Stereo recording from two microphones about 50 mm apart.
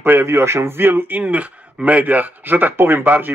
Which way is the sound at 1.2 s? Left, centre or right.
Right.